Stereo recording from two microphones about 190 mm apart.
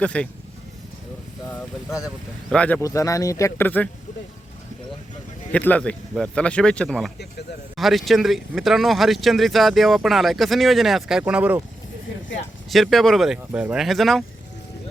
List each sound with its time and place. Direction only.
0.0 s speech: 5° left (ahead or behind)
1.5 s speech: 15° left (ahead or behind)
2.8 s speech: 15° left (ahead or behind)
5.5 s speech: 10° left (ahead or behind)
12.7 s speech: centre (ahead or behind)